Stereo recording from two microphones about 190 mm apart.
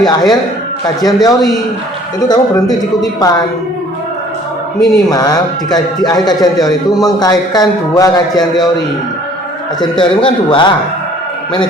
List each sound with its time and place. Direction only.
0.0 s a man's voice: 20° left (ahead or behind)
4.8 s a man's voice: centre (ahead or behind)
5.1 s a man's voice: 20° left (ahead or behind)
10.0 s a man's voice: 25° left (ahead or behind)